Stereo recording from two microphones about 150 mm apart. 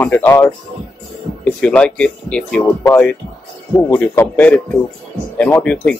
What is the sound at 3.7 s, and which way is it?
Speech, 15° left (ahead or behind).